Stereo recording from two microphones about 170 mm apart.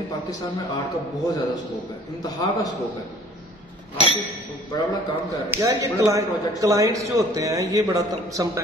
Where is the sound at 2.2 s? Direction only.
20° left (ahead or behind).